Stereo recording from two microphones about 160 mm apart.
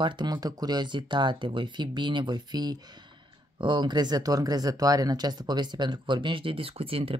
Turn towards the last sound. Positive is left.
turn(degrees=-35)  # may be behind; listen again after turning